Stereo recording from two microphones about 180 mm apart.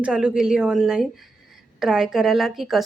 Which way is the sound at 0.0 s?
5° right (ahead or behind).